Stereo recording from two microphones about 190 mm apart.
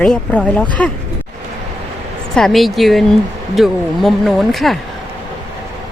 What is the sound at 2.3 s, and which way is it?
A woman's voice, centre (ahead or behind).